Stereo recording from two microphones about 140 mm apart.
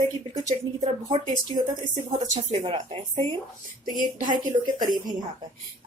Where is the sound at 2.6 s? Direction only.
45° right (ahead or behind).